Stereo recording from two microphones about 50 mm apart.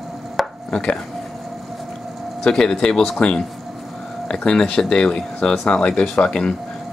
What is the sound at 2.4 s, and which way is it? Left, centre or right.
A man's voice, centre.